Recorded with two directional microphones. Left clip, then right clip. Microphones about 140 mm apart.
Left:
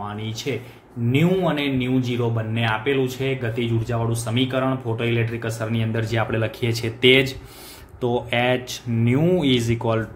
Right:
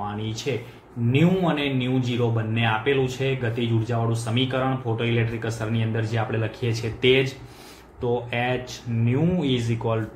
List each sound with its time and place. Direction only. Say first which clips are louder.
0.5 s speech: even; 30° left (ahead or behind)